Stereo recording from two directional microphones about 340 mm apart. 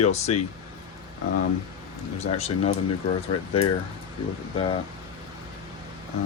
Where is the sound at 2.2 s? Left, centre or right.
Centre.